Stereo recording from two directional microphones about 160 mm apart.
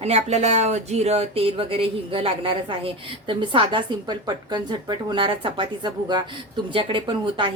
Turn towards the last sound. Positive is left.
turn(degrees=-30)  # may be behind; listen again after turning